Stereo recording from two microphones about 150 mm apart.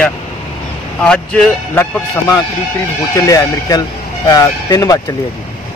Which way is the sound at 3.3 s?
25° left (ahead or behind).